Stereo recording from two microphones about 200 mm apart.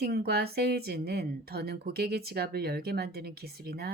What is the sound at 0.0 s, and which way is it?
Speech, 50° right (ahead or behind).